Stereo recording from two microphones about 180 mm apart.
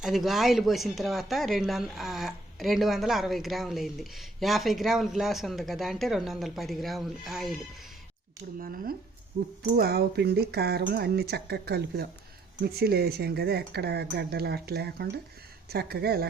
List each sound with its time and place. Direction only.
0.0 s speech: centre (ahead or behind)
8.5 s speech: 55° right (ahead or behind)